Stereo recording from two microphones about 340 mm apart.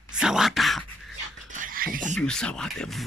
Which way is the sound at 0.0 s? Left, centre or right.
Centre.